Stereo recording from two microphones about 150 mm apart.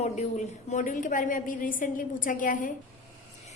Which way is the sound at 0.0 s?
50° left (ahead or behind).